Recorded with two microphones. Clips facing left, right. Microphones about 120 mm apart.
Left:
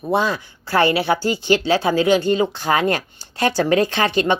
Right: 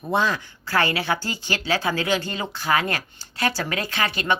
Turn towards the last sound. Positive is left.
turn(degrees=25)  # may be behind; listen again after turning